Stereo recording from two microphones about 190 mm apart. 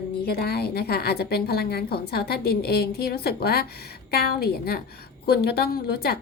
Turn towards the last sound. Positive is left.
turn(degrees=55)  # may be behind; listen again after turning